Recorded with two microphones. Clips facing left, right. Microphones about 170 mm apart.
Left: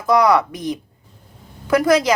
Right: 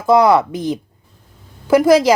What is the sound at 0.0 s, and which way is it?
A woman's voice, 25° right (ahead or behind).